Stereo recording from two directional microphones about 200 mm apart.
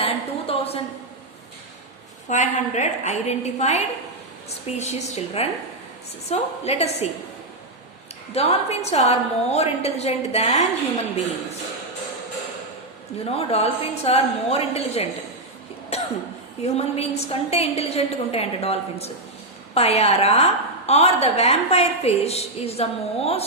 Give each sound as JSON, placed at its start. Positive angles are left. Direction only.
{"t": 0.0, "sound": "a sound", "side_deg": 30}
{"t": 2.3, "sound": "a woman's voice", "side_deg": 35}
{"t": 8.3, "sound": "a woman's voice", "side_deg": 30}
{"t": 13.2, "sound": "a woman's voice", "side_deg": 30}
{"t": 15.9, "sound": "cough", "side_deg": 30}
{"t": 16.6, "sound": "a woman's voice", "side_deg": 30}